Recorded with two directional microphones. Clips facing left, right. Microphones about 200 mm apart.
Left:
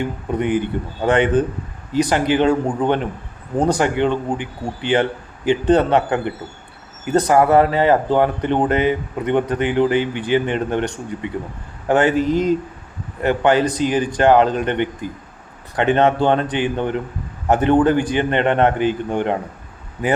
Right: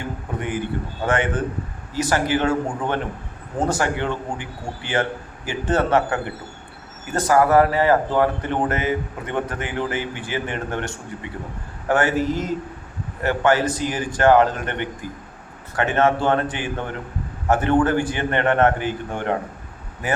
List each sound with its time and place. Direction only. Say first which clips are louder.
0.3 s speech: left 7 dB; 20° left (ahead or behind)